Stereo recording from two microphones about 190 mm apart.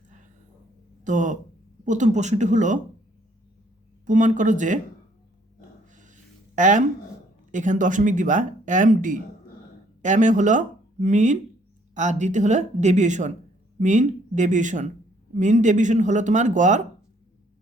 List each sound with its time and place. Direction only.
1.0 s speech: 40° right (ahead or behind)
4.0 s speech: 40° right (ahead or behind)
5.8 s dog: 40° right (ahead or behind)
6.6 s speech: 40° right (ahead or behind)